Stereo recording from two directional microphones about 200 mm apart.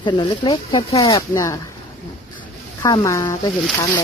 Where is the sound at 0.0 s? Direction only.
20° left (ahead or behind).